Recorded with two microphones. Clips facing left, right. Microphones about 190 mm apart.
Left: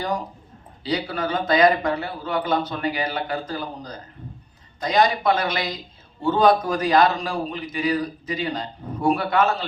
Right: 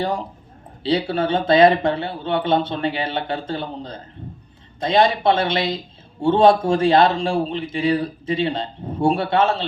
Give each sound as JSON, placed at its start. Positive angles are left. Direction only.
{"t": 0.8, "sound": "a man's voice", "side_deg": -30}